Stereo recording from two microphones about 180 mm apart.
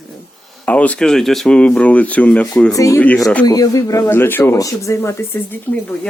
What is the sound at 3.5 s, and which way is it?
Speech, 20° left (ahead or behind).